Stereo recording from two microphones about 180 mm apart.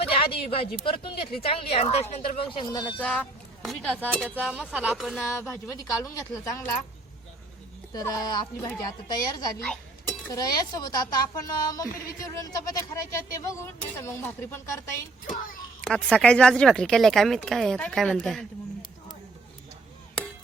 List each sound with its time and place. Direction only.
0.0 s a woman's voice: 30° left (ahead or behind)
3.0 s a woman's voice: 5° left (ahead or behind)
5.4 s speech: 15° left (ahead or behind)
7.9 s a woman's voice: 20° left (ahead or behind); by 18.4 s 5° left (ahead or behind)